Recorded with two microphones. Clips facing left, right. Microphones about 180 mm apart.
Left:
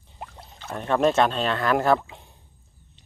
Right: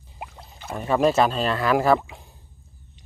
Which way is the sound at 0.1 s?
5° right (ahead or behind).